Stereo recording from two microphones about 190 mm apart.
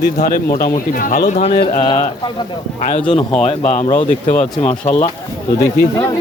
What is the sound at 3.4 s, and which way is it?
Speech, 40° left (ahead or behind).